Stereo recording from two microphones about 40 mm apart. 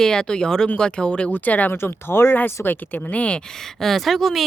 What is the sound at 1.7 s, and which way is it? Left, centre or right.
Speech, left.